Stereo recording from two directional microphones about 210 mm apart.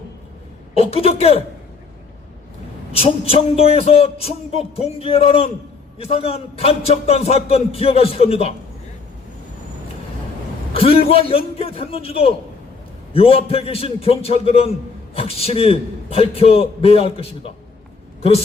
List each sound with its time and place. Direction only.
0.7 s a man's voice: 30° left (ahead or behind)
2.9 s a man's voice: 30° left (ahead or behind)
10.8 s a man's voice: 25° left (ahead or behind)